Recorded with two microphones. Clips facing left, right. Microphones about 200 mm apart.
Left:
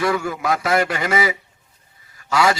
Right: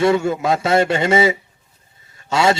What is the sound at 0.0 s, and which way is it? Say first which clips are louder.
A man's voice: right 5 dB; 25° right (ahead or behind).